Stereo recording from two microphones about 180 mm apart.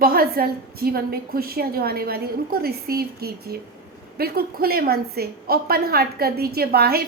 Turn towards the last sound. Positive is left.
turn(degrees=-60)  # may be behind; listen again after turning